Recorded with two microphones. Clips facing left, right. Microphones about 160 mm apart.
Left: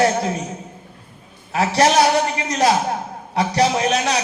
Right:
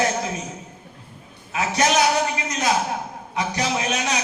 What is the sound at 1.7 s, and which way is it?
Speech, 35° left (ahead or behind).